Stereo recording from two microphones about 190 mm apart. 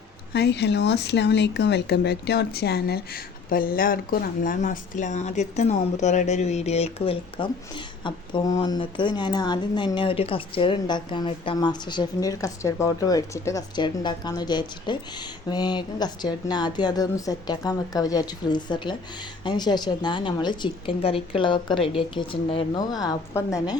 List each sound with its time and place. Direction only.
0.3 s speech: 65° left (ahead or behind); by 7.5 s 30° left (ahead or behind)
8.5 s speech: 20° left (ahead or behind)